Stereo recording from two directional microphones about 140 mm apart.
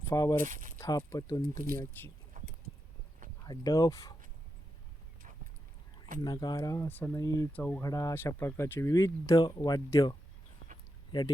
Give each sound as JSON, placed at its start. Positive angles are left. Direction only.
{"t": 0.1, "sound": "speech", "side_deg": 25}
{"t": 0.3, "sound": "speech", "side_deg": -70}
{"t": 0.8, "sound": "speech", "side_deg": 25}
{"t": 2.3, "sound": "a sound", "side_deg": -70}
{"t": 3.4, "sound": "speech", "side_deg": 30}
{"t": 6.2, "sound": "speech", "side_deg": 30}
{"t": 7.5, "sound": "speech", "side_deg": 10}
{"t": 7.9, "sound": "speech", "side_deg": 25}